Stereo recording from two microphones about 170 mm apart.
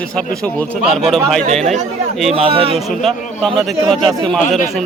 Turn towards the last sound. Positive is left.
turn(degrees=0)  # may be behind; listen again after turning